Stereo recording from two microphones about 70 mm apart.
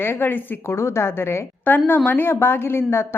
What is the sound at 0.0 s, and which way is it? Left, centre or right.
A woman's voice, left.